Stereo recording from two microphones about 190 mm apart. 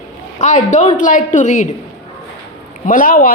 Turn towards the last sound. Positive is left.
turn(degrees=50)  # may be behind; listen again after turning